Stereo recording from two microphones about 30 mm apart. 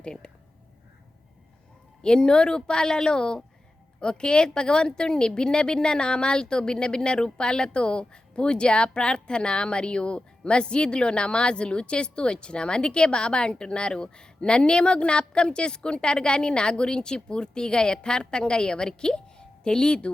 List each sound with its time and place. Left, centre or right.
0.0 s speech: left
2.0 s a woman's voice: left